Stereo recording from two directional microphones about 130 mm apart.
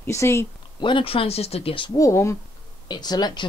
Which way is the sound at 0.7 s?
40° left (ahead or behind).